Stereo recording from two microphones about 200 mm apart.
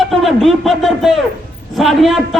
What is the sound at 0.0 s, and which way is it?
A man's voice, centre (ahead or behind).